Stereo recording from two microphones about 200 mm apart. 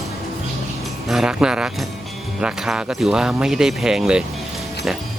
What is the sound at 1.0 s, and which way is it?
Speech, 5° right (ahead or behind).